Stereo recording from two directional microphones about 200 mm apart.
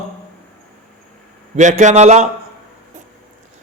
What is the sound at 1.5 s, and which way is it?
Speech, 35° right (ahead or behind).